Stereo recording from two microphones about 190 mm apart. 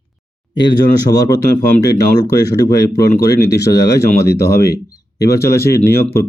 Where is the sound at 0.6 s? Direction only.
20° left (ahead or behind).